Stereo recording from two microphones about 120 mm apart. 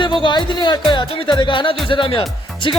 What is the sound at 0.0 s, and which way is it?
Speech, 40° left (ahead or behind).